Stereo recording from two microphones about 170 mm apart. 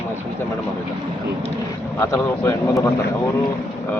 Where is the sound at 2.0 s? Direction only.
15° left (ahead or behind).